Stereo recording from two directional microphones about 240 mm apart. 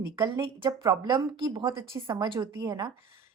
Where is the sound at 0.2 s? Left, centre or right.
Centre.